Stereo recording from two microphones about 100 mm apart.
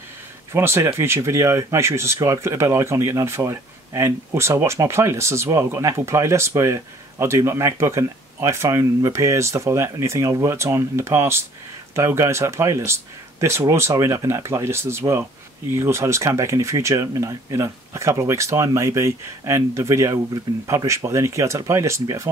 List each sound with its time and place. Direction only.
0.5 s speech: 25° right (ahead or behind)